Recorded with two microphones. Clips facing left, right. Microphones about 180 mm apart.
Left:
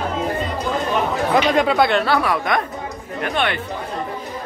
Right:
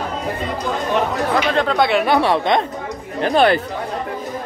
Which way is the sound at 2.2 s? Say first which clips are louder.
Right 4 dB; 25° right (ahead or behind).